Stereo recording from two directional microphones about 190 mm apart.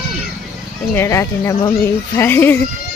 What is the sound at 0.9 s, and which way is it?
Speech, 15° left (ahead or behind).